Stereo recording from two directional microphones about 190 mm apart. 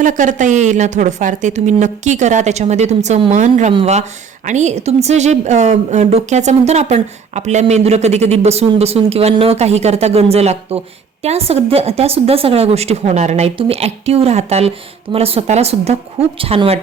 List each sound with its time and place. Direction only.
0.0 s a woman's voice: 40° right (ahead or behind)